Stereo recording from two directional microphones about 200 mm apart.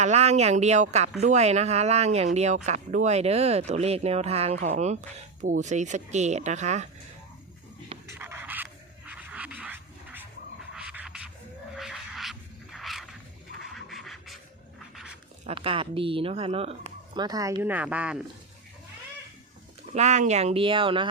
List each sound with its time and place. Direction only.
0.0 s speech: 35° right (ahead or behind)
8.0 s a sound: 10° right (ahead or behind)
13.6 s music: centre (ahead or behind)
14.9 s a sound: 5° right (ahead or behind)
15.4 s speech: 25° right (ahead or behind); by 18.2 s 5° right (ahead or behind)
19.9 s speech: 35° right (ahead or behind)